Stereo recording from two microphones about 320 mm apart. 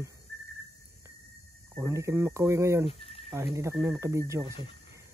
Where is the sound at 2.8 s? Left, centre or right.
Centre.